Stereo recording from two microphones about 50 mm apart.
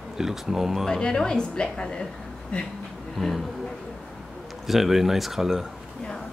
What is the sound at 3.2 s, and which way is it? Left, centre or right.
Speech, centre.